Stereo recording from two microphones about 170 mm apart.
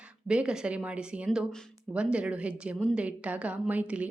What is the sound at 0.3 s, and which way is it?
A woman's voice, 5° right (ahead or behind).